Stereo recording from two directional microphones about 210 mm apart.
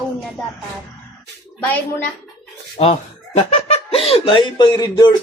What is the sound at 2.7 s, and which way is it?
Speech, 25° left (ahead or behind).